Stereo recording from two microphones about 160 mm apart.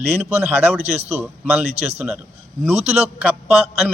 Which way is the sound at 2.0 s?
5° right (ahead or behind).